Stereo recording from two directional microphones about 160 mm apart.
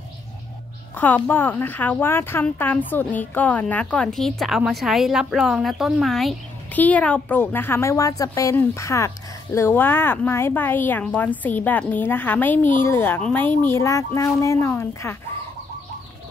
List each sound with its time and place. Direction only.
0.9 s speech: 10° left (ahead or behind)